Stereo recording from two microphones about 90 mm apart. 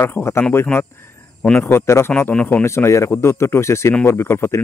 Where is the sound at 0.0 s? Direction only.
30° left (ahead or behind).